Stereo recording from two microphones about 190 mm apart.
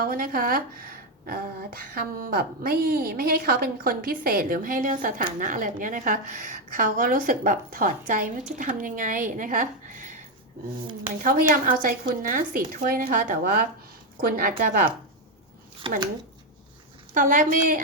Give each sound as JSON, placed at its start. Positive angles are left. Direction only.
{"t": 0.0, "sound": "a woman's voice", "side_deg": -50}
{"t": 11.2, "sound": "a woman's voice", "side_deg": -45}
{"t": 15.9, "sound": "speech", "side_deg": -30}
{"t": 17.2, "sound": "a woman's voice", "side_deg": -45}